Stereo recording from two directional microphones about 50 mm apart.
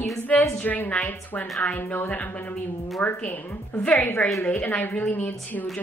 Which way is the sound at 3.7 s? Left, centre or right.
Left.